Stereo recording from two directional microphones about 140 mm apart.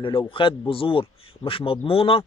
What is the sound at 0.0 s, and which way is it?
Speech, 35° left (ahead or behind).